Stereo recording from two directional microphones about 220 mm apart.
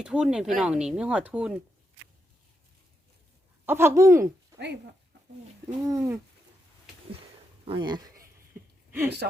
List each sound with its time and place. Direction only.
0.0 s speech: 5° right (ahead or behind)
3.7 s speech: 10° right (ahead or behind)
4.5 s a sound: 15° right (ahead or behind)
5.6 s speech: 15° right (ahead or behind)
7.6 s speech: 20° right (ahead or behind)
8.5 s a sound: 10° right (ahead or behind)
8.9 s speech: 10° right (ahead or behind)